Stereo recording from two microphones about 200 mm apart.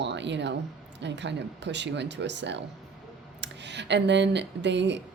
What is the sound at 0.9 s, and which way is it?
Speech, 60° right (ahead or behind).